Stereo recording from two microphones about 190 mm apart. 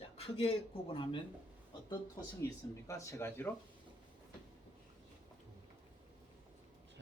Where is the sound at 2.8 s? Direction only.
15° left (ahead or behind).